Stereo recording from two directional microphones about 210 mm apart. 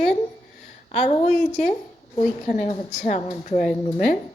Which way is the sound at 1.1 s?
30° left (ahead or behind).